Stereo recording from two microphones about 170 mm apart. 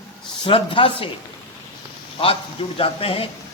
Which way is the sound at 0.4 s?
30° left (ahead or behind).